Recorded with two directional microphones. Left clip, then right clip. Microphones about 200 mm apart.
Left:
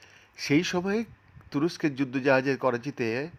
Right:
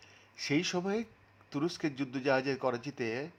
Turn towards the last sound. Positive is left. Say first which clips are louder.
# left 6 dB
turn(degrees=15)  # may be behind; listen again after turning